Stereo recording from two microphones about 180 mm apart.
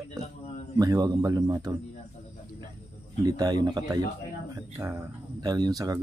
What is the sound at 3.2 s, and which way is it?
Speech, 20° right (ahead or behind).